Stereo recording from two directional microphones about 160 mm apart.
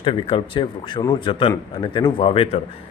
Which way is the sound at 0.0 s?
30° left (ahead or behind).